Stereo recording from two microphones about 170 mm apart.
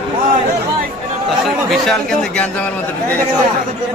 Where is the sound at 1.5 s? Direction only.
Centre (ahead or behind).